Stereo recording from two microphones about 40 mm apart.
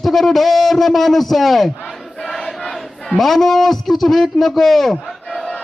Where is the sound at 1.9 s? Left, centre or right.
Centre.